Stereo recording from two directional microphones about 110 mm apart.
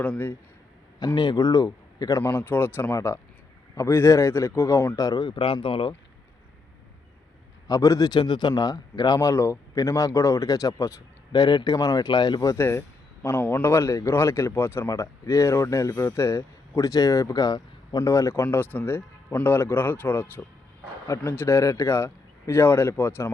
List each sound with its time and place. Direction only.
0.0 s speech: 15° left (ahead or behind)
0.9 s a man's voice: 40° left (ahead or behind)
2.3 s speech: 20° left (ahead or behind)
5.2 s speech: 50° left (ahead or behind)
7.7 s speech: 30° left (ahead or behind)
11.3 s speech: 40° left (ahead or behind)
12.5 s speech: 25° left (ahead or behind)